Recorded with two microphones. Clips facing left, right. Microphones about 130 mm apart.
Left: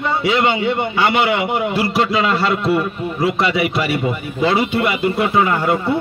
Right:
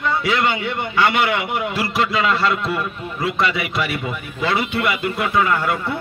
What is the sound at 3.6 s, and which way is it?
Speech, centre (ahead or behind).